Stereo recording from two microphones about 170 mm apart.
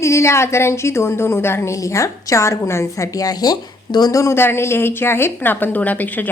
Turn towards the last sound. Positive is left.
turn(degrees=10)  # may be behind; listen again after turning